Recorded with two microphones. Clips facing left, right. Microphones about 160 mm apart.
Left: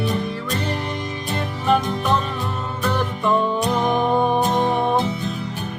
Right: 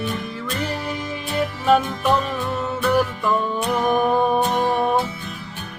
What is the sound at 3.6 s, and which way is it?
Music, 25° left (ahead or behind).